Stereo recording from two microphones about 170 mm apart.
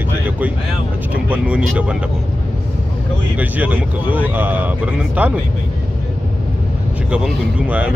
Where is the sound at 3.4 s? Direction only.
10° right (ahead or behind).